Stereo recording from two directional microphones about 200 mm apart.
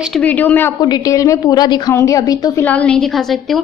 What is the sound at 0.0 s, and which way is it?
A woman's voice, 5° left (ahead or behind).